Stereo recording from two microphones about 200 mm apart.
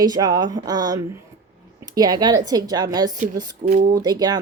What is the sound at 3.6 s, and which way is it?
Speech, 35° right (ahead or behind).